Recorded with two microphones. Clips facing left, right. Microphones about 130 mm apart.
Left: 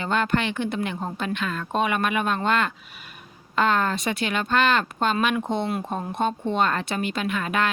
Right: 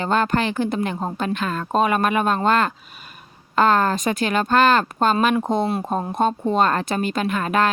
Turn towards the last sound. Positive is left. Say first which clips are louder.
# right 5 dB
turn(degrees=-40)  # may be behind; listen again after turning